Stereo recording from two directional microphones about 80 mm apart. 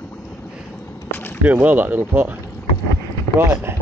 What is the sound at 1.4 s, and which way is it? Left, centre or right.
Speech, right.